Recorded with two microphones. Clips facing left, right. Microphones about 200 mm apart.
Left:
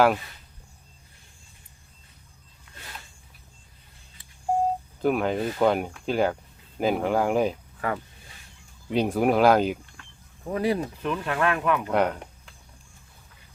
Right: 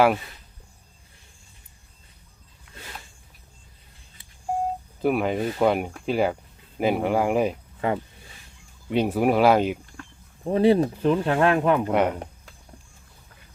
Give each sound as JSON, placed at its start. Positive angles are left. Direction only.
{"t": 2.7, "sound": "a sound", "side_deg": 0}
{"t": 5.0, "sound": "speech", "side_deg": -5}
{"t": 7.8, "sound": "speech", "side_deg": -20}
{"t": 8.9, "sound": "speech", "side_deg": -5}
{"t": 10.0, "sound": "speech", "side_deg": -30}
{"t": 11.9, "sound": "speech", "side_deg": -5}